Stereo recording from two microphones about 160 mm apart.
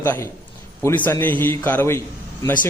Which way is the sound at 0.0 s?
15° left (ahead or behind).